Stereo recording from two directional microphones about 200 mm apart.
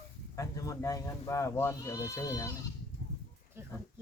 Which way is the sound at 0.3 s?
15° left (ahead or behind).